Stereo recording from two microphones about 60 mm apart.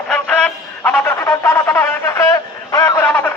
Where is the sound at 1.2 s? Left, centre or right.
Left.